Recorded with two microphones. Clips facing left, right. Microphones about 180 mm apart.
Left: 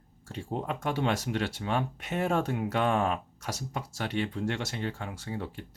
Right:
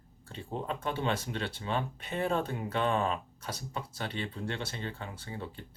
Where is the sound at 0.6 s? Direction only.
75° left (ahead or behind).